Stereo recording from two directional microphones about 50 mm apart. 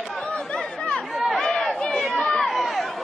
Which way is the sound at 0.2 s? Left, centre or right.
Left.